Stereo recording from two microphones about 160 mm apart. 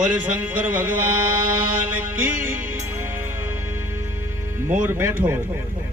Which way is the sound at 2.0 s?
15° right (ahead or behind).